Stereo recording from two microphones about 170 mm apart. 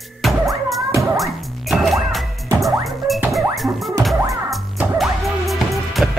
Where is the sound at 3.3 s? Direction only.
Centre (ahead or behind).